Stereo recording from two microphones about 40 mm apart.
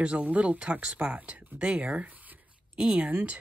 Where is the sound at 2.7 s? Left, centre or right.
Right.